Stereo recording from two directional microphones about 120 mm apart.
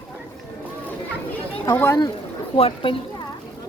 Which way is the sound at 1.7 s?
20° left (ahead or behind).